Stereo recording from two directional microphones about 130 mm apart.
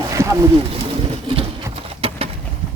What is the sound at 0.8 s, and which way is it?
Pigeon, 50° right (ahead or behind).